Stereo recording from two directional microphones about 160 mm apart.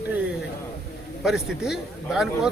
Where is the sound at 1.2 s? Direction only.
5° right (ahead or behind).